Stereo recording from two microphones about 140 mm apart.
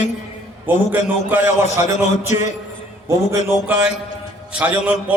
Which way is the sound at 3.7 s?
10° right (ahead or behind).